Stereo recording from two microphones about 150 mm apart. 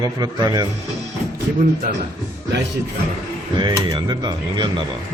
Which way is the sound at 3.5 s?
30° right (ahead or behind).